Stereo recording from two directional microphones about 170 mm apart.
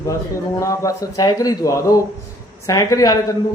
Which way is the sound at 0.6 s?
20° left (ahead or behind).